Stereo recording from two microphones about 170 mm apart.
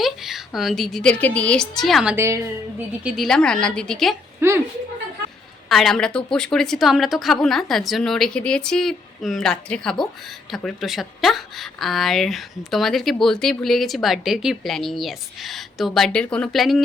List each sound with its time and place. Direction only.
0.0 s a woman's voice: centre (ahead or behind)
2.1 s a woman's voice: 15° right (ahead or behind); by 4.2 s centre (ahead or behind)
4.4 s a sound: 15° right (ahead or behind)
5.6 s a woman's voice: centre (ahead or behind)